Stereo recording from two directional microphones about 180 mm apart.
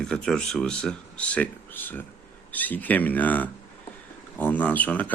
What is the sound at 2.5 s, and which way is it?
Speech, 10° left (ahead or behind).